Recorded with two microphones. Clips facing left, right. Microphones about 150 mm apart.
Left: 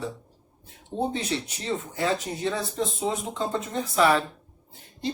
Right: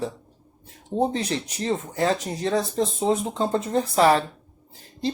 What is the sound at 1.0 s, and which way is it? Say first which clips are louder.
Speech: right 4 dB; 35° right (ahead or behind).